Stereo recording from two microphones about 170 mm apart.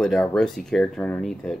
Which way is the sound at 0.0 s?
5° left (ahead or behind).